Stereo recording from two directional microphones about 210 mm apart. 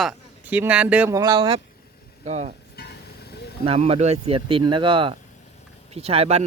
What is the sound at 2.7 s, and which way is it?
Vehicle, 50° left (ahead or behind).